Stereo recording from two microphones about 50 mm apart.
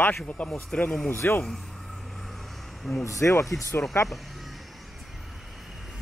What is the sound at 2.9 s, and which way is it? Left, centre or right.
Speech, left.